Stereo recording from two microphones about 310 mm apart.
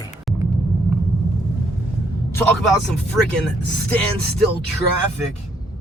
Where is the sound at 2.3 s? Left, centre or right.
Centre.